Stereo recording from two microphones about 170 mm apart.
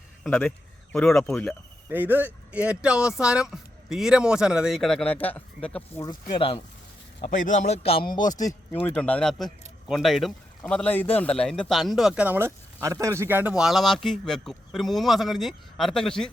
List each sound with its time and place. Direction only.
0.9 s a man's voice: 5° left (ahead or behind)
1.9 s a man's voice: 10° right (ahead or behind); by 5.8 s 5° left (ahead or behind)
6.0 s speech: 30° left (ahead or behind)
7.3 s speech: 50° left (ahead or behind)
8.3 s a man's voice: 20° left (ahead or behind); by 16.3 s 5° left (ahead or behind)